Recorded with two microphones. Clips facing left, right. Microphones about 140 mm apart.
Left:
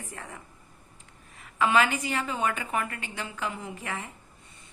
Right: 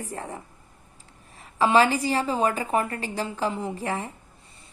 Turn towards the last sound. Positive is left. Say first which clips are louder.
# right 7 dB
turn(degrees=-35)  # may be behind; listen again after turning